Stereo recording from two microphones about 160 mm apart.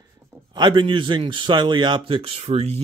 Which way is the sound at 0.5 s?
30° right (ahead or behind).